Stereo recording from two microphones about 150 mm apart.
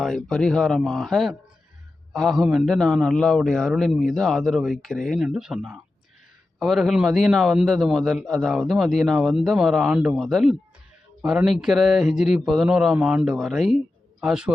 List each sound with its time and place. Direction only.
0.0 s a man's voice: centre (ahead or behind)